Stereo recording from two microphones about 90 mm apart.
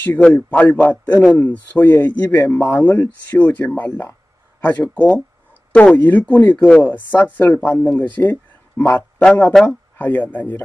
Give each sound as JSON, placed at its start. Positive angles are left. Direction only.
{"t": 0.2, "sound": "a man's voice", "side_deg": 20}
{"t": 9.5, "sound": "speech", "side_deg": 5}
{"t": 9.9, "sound": "a man's voice", "side_deg": 20}